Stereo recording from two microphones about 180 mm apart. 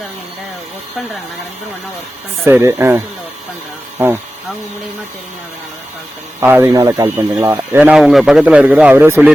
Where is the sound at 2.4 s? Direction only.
15° right (ahead or behind).